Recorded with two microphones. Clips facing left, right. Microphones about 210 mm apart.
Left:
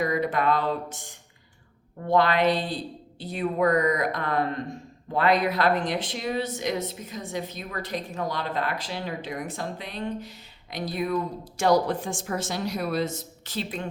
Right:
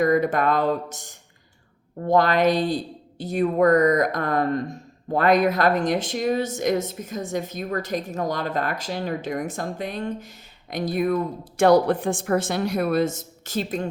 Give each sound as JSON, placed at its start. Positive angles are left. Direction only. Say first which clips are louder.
{"t": 0.0, "sound": "speech", "louder": "right 5 dB", "side_deg": -45}